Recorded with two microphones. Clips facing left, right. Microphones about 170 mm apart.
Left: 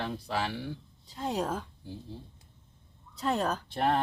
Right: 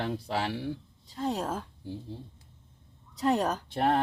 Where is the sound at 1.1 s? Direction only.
Centre (ahead or behind).